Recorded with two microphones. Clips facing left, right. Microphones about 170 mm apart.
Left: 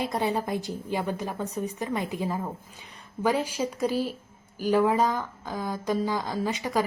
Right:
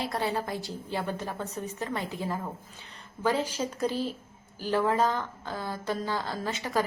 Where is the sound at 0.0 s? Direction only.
20° left (ahead or behind).